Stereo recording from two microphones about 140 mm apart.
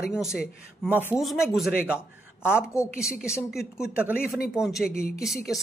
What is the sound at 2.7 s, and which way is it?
Speech, 20° left (ahead or behind).